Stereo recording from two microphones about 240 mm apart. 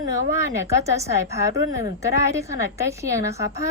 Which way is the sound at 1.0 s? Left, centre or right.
Centre.